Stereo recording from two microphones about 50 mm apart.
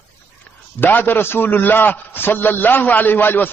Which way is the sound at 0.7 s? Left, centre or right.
Left.